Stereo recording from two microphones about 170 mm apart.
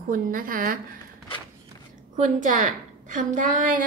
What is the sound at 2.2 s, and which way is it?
A woman's voice, 45° right (ahead or behind).